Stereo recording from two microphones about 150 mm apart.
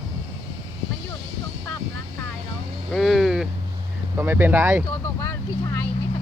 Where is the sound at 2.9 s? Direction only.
Centre (ahead or behind).